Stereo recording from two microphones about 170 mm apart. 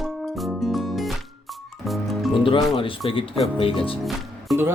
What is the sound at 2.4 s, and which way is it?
Speech, 30° left (ahead or behind).